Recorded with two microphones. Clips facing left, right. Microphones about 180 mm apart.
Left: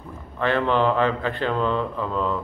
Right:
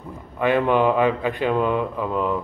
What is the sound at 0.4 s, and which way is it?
A man's voice, 15° right (ahead or behind).